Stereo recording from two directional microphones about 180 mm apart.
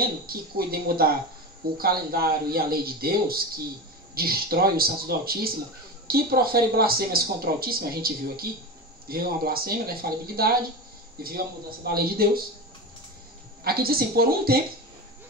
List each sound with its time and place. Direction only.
0.0 s speech: 55° right (ahead or behind)
13.7 s speech: 55° right (ahead or behind)